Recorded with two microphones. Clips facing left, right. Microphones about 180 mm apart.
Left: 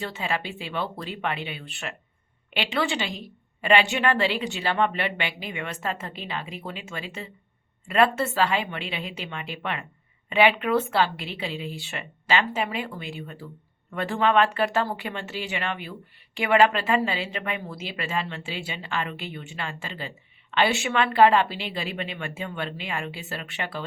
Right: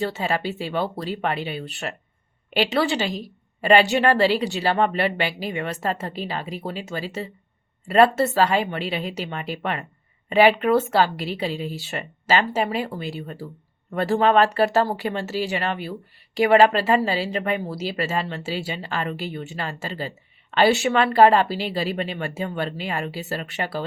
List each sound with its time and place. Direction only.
0.0 s speech: 40° right (ahead or behind)